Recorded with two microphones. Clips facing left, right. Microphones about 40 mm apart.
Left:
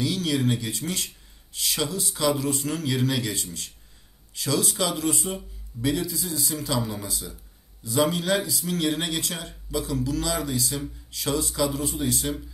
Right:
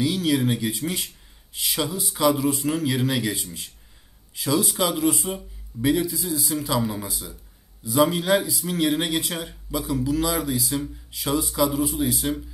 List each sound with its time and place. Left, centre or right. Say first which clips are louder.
0.0 s speech: right 3 dB; centre